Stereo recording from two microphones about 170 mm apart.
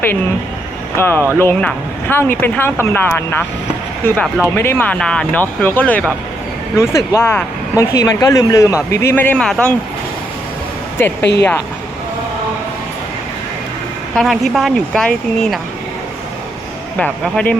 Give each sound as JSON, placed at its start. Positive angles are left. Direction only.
{"t": 0.9, "sound": "speech", "side_deg": 15}
{"t": 10.9, "sound": "speech", "side_deg": 15}
{"t": 14.2, "sound": "speech", "side_deg": 0}
{"t": 17.0, "sound": "speech", "side_deg": 5}